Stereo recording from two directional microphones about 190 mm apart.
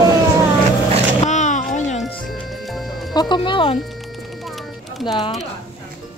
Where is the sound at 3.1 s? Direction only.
25° left (ahead or behind).